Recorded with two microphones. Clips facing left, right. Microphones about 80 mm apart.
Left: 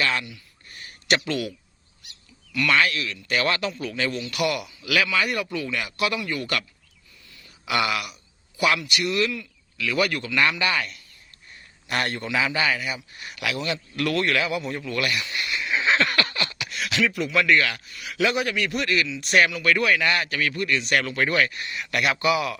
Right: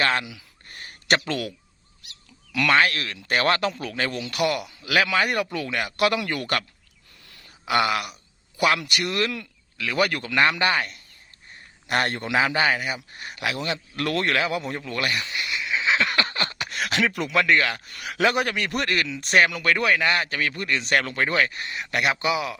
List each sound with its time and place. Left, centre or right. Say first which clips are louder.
0.0 s a man's voice: right 2 dB; right
0.7 s a sound: right 1 dB; right
2.6 s a man's voice: right 2 dB; right
7.6 s a man's voice: right 2 dB; right
8.5 s a man's voice: right 1 dB; right
9.7 s a man's voice: even; right
15.4 s a sound: left 1 dB; centre
16.1 s a sound: even; right
17.3 s a man's voice: even; right
17.8 s a man's voice: right 2 dB; right
19.6 s a man's voice: even; right